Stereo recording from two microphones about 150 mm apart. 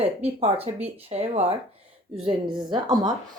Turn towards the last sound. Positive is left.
turn(degrees=-30)  # may be behind; listen again after turning